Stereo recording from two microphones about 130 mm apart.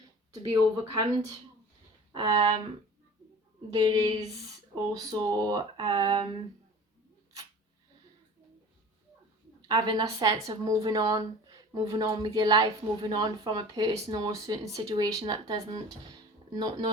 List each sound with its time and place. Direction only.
0.9 s speech: 30° right (ahead or behind)
3.7 s speech: 30° right (ahead or behind)
9.6 s a woman's voice: 30° right (ahead or behind)